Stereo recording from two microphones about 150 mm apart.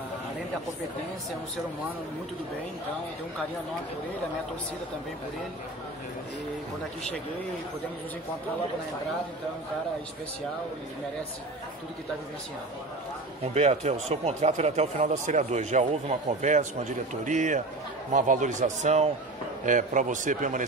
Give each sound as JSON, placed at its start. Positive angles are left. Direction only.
{"t": 13.6, "sound": "a man's voice", "side_deg": -45}